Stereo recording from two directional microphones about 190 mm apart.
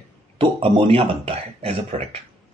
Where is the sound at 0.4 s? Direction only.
30° right (ahead or behind).